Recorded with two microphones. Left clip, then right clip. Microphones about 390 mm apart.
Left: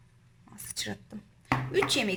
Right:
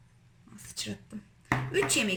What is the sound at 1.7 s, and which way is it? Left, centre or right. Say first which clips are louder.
Speech: left 1 dB; centre.